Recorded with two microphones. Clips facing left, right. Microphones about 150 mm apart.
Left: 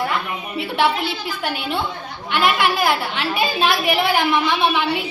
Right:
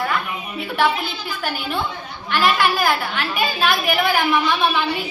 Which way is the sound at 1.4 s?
20° left (ahead or behind).